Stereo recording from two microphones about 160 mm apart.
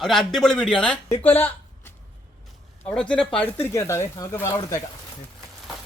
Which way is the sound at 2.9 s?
5° left (ahead or behind).